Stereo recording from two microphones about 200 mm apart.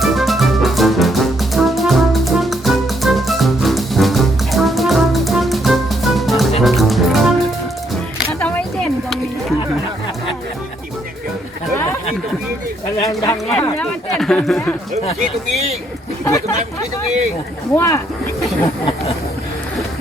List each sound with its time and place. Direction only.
0.0 s music: centre (ahead or behind)
8.3 s a sound: 10° left (ahead or behind)
13.0 s speech: 15° left (ahead or behind)
13.3 s speech: 5° left (ahead or behind)
16.2 s speech: 15° left (ahead or behind)
17.7 s speech: 15° left (ahead or behind)